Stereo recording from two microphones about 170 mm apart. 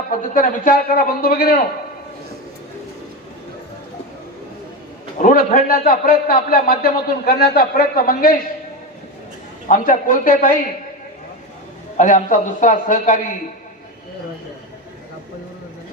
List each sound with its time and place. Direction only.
0.1 s a man's voice: 55° left (ahead or behind)
5.2 s a man's voice: 55° left (ahead or behind)
9.6 s a man's voice: 50° left (ahead or behind)
11.9 s a man's voice: 50° left (ahead or behind)